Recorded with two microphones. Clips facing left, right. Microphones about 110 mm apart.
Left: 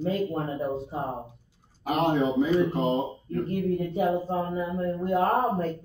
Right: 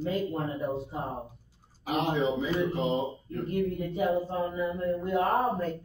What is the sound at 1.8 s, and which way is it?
Speech, 45° left (ahead or behind).